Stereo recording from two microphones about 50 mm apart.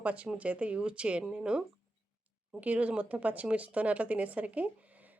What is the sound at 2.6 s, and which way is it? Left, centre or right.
Speech, right.